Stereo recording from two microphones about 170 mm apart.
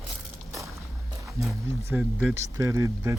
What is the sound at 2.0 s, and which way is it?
Speech, centre (ahead or behind).